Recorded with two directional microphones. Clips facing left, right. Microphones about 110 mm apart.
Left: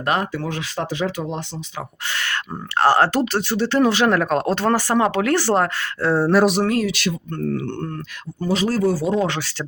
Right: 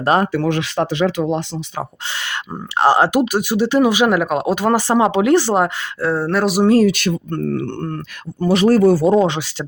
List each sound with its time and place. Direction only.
0.3 s speech: 85° right
2.1 s speech: 20° right (ahead or behind)
6.0 s speech: centre (ahead or behind)
6.8 s speech: 50° right (ahead or behind)
9.2 s speech: 15° right (ahead or behind)